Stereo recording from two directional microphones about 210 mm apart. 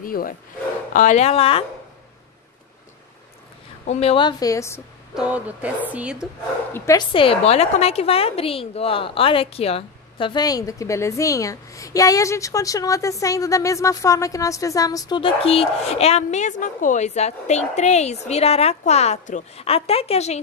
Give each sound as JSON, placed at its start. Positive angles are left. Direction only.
{"t": 0.0, "sound": "a woman's voice", "side_deg": 40}
{"t": 3.8, "sound": "a woman's voice", "side_deg": 30}
{"t": 5.1, "sound": "speech", "side_deg": -5}
{"t": 6.7, "sound": "a woman's voice", "side_deg": 15}